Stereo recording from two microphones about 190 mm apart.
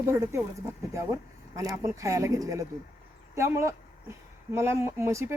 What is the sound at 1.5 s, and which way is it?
Speech, 15° right (ahead or behind).